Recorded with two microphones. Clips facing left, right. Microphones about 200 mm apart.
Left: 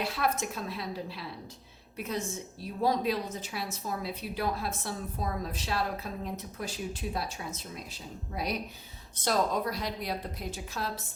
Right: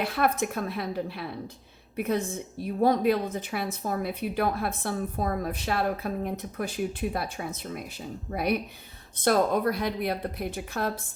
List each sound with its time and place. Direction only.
0.0 s a woman's voice: 55° right (ahead or behind)